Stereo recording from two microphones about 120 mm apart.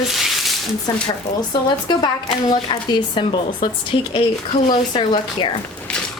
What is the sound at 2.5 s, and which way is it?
Speech, 40° left (ahead or behind).